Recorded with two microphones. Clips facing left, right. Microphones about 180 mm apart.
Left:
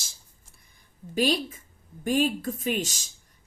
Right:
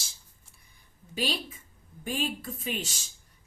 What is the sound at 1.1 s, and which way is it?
A woman's voice, 45° left (ahead or behind).